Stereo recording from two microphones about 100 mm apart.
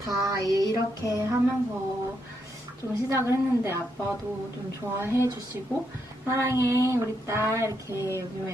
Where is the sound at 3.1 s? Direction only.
25° right (ahead or behind).